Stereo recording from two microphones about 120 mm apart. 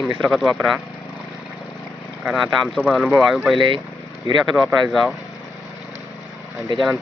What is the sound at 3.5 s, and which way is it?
Speech, 45° right (ahead or behind).